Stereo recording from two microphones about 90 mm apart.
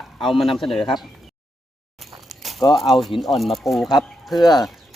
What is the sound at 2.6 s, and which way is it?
Speech, 50° left (ahead or behind).